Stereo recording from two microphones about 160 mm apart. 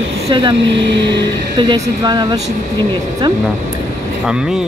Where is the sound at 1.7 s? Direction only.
25° right (ahead or behind).